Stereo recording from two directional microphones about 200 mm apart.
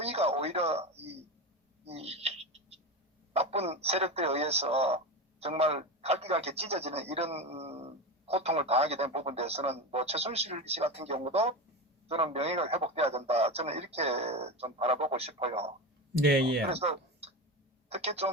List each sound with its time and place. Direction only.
0.0 s a man's voice: 30° right (ahead or behind)
1.8 s a sound: 30° right (ahead or behind)
3.3 s a man's voice: 30° right (ahead or behind)
16.1 s speech: 50° right (ahead or behind)
16.6 s speech: 30° right (ahead or behind)